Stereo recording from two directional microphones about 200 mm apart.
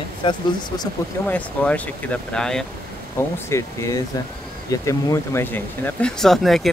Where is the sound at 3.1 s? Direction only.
15° left (ahead or behind).